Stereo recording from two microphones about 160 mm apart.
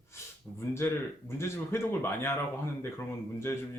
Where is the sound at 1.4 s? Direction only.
15° left (ahead or behind).